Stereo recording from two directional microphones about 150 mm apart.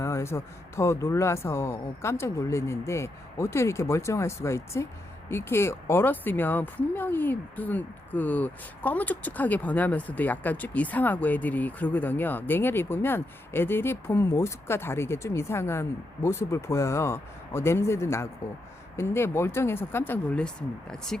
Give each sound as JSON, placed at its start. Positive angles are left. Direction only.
{"t": 0.0, "sound": "speech", "side_deg": 20}